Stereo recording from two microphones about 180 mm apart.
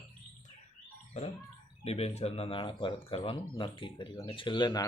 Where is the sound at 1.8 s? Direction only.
35° left (ahead or behind).